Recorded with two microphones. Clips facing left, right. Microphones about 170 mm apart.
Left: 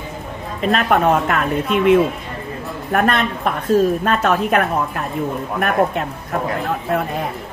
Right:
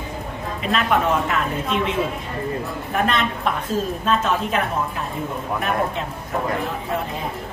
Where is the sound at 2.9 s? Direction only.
60° left (ahead or behind).